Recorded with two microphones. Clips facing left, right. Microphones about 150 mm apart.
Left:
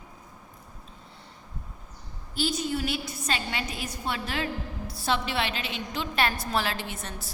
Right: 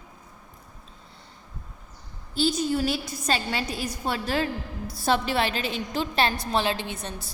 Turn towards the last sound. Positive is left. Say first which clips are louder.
# right 4 dB
turn(degrees=-20)  # may be behind; listen again after turning